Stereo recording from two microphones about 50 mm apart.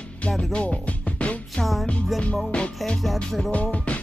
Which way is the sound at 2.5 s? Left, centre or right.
Centre.